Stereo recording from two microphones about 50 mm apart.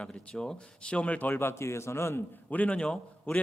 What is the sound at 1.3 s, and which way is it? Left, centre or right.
Speech, left.